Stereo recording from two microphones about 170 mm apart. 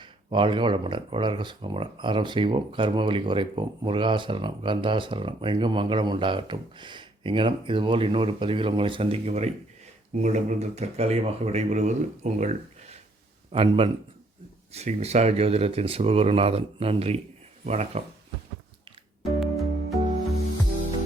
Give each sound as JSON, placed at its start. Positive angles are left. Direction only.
{"t": 0.0, "sound": "speech", "side_deg": -30}
{"t": 13.5, "sound": "speech", "side_deg": -30}
{"t": 19.2, "sound": "music", "side_deg": 0}